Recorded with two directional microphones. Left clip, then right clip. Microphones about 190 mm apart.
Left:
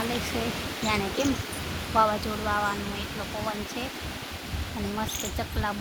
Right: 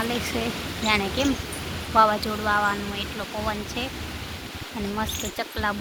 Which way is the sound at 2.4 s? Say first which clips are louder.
Right 5 dB; 15° right (ahead or behind).